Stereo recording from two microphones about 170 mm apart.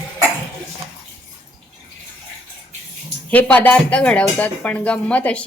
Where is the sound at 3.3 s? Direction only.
10° left (ahead or behind).